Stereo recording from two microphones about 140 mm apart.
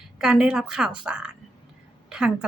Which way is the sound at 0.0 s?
5° right (ahead or behind).